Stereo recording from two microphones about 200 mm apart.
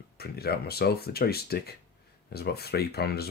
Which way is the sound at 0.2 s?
50° left (ahead or behind).